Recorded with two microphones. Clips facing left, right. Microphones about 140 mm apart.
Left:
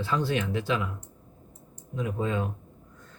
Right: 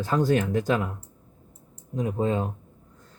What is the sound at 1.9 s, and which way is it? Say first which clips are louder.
Speech: right 4 dB; 35° right (ahead or behind).